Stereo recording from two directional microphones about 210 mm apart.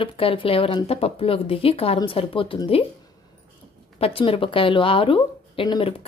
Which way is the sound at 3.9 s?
25° left (ahead or behind).